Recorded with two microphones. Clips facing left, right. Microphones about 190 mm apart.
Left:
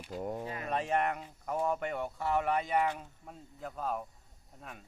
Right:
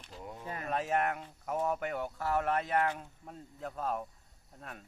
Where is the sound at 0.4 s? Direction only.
45° right (ahead or behind).